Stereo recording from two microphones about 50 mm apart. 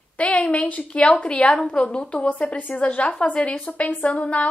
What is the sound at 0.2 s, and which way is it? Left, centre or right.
A woman's voice, left.